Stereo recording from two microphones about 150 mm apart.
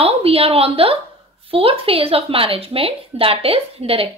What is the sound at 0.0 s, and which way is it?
A woman's voice, 40° right (ahead or behind).